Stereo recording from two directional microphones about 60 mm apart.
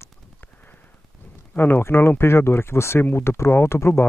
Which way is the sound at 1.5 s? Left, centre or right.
Left.